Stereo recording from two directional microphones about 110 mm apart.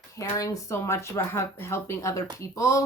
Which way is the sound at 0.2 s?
30° left (ahead or behind).